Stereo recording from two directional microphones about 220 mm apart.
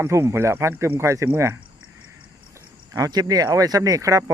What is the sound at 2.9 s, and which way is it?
Speech, 15° right (ahead or behind).